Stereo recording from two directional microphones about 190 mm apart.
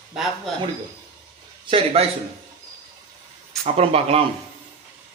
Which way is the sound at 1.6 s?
30° right (ahead or behind).